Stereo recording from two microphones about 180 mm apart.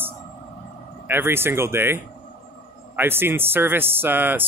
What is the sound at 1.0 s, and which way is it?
Speech, 10° right (ahead or behind).